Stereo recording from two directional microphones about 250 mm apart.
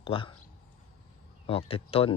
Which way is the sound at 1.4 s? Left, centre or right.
Left.